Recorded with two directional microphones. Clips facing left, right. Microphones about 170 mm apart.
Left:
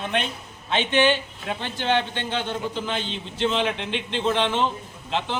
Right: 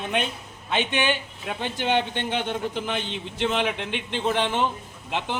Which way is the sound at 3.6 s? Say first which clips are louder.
Left 1 dB; 10° right (ahead or behind).